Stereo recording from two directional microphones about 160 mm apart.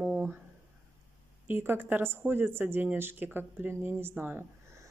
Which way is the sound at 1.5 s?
15° right (ahead or behind).